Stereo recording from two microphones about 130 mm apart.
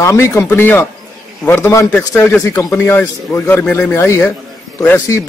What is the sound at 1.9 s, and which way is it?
Speech, 10° left (ahead or behind).